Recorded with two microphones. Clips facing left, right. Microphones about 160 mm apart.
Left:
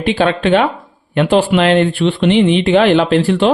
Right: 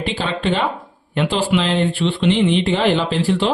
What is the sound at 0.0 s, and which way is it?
Speech, 65° left (ahead or behind).